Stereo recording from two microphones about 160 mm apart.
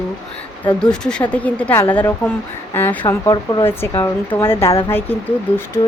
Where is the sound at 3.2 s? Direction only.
30° left (ahead or behind).